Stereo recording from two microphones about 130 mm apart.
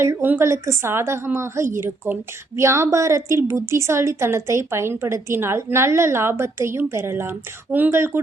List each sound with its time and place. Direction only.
0.0 s a woman's voice: 20° right (ahead or behind)